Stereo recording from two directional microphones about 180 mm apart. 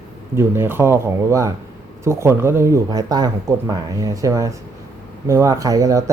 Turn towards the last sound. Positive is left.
turn(degrees=-20)  # may be behind; listen again after turning